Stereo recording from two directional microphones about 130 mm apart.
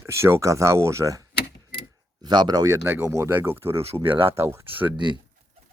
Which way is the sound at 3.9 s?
45° right (ahead or behind).